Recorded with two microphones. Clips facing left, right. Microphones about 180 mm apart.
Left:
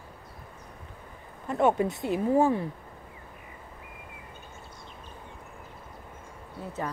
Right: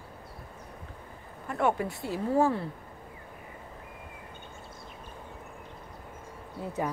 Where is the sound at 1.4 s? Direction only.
20° left (ahead or behind).